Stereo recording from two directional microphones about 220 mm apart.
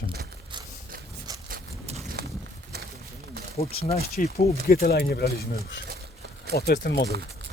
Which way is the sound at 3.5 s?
30° left (ahead or behind).